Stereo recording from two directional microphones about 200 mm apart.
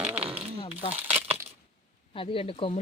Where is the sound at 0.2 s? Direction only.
30° right (ahead or behind).